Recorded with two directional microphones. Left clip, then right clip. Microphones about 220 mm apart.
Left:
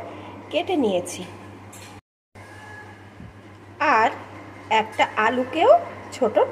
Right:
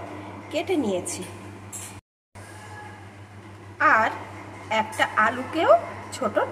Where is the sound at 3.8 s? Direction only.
20° left (ahead or behind).